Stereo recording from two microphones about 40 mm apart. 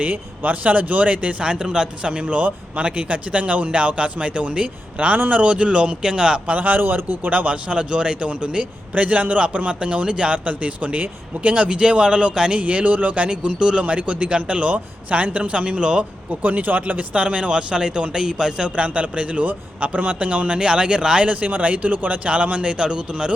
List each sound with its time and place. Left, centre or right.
0.0 s a man's voice: right
1.4 s a man's voice: right
4.9 s a man's voice: right; by 6.4 s centre
6.5 s a man's voice: right
12.5 s a man's voice: right
16.4 s a man's voice: right
17.2 s speech: right
18.8 s a man's voice: right
21.2 s a man's voice: right
22.8 s speech: right